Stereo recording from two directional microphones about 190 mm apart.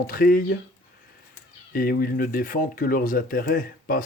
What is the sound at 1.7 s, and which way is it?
Speech, 50° left (ahead or behind).